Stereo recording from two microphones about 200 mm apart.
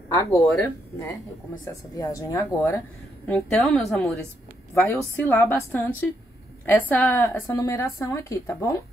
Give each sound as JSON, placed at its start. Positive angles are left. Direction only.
{"t": 0.1, "sound": "a woman's voice", "side_deg": 15}
{"t": 3.3, "sound": "a woman's voice", "side_deg": 5}